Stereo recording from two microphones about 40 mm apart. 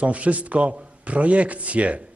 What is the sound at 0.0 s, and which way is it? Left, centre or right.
A man's voice, right.